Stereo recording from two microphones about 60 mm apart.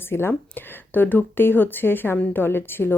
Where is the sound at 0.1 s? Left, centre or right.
Left.